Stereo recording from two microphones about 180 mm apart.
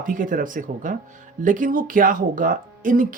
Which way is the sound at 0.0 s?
50° right (ahead or behind).